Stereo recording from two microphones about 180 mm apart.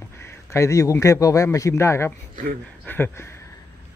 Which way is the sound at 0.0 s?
15° left (ahead or behind).